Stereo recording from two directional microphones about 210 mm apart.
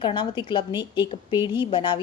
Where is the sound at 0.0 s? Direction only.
20° left (ahead or behind).